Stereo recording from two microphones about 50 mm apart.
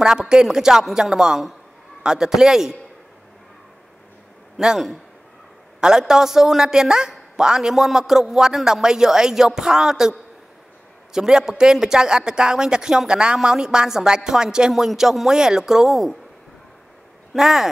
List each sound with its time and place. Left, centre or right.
0.0 s speech: centre
5.8 s speech: centre
11.1 s speech: centre
17.3 s speech: centre